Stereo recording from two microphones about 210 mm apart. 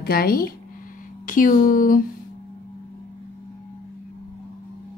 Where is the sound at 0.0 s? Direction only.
45° left (ahead or behind).